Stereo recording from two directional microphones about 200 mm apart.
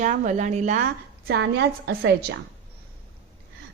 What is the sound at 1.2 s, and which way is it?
A woman's voice, 55° right (ahead or behind).